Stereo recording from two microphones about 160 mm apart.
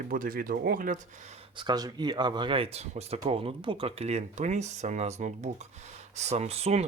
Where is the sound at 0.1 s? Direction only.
60° right (ahead or behind).